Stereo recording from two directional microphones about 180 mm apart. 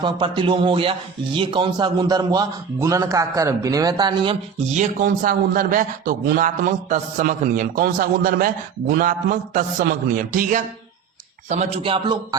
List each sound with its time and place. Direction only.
0.0 s speech: 25° right (ahead or behind)
4.7 s a man's voice: 45° right (ahead or behind); by 12.4 s 25° right (ahead or behind)